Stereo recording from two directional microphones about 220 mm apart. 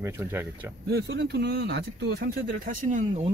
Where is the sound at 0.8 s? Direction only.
50° right (ahead or behind).